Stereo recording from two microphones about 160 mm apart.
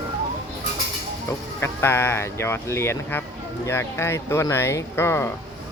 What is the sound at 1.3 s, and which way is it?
Speech, 15° left (ahead or behind).